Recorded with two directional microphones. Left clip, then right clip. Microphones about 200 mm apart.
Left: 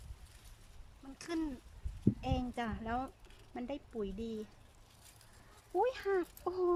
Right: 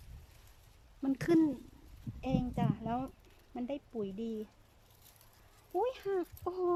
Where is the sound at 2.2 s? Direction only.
15° right (ahead or behind).